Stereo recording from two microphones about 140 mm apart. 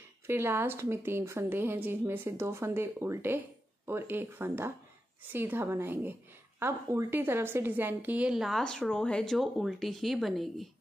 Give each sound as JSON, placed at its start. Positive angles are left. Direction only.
{"t": 0.3, "sound": "a woman's voice", "side_deg": -15}